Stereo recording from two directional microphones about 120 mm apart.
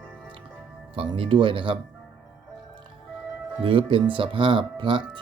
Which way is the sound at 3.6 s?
50° right (ahead or behind).